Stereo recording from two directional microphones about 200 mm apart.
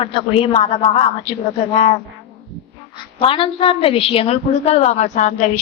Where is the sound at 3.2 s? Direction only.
25° left (ahead or behind).